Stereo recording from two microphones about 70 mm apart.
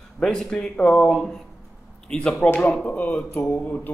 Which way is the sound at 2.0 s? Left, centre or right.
Centre.